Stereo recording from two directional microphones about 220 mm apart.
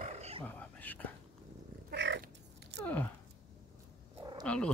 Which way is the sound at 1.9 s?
50° right (ahead or behind).